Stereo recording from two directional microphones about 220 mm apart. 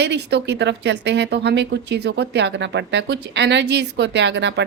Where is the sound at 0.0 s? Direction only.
50° right (ahead or behind).